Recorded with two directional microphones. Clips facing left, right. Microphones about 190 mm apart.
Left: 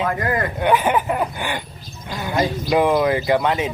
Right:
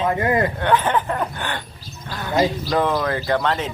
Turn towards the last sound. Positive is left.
turn(degrees=10)  # may be behind; listen again after turning